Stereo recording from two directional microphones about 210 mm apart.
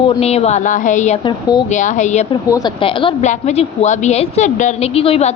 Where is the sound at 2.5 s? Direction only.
20° left (ahead or behind).